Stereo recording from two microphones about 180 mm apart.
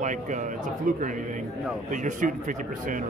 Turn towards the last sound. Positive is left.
turn(degrees=-45)  # may be behind; listen again after turning